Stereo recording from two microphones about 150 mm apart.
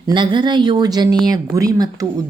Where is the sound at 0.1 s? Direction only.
30° right (ahead or behind).